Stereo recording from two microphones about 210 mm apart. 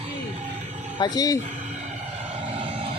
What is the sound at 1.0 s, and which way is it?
Speech, 15° left (ahead or behind).